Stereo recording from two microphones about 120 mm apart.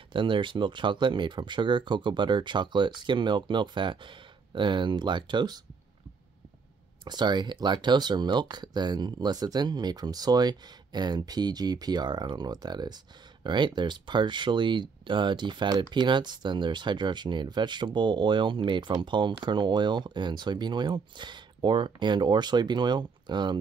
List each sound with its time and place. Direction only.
0.1 s speech: 45° right (ahead or behind)
7.1 s speech: 35° right (ahead or behind)